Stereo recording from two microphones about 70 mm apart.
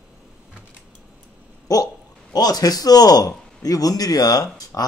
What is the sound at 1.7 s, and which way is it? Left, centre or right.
A man's voice, left.